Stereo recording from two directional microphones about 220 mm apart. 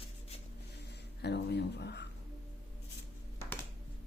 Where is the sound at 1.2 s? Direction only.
50° left (ahead or behind).